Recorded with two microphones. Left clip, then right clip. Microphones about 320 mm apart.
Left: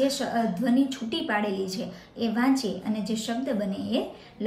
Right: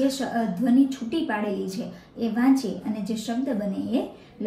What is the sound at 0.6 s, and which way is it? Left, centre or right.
A woman's voice, centre.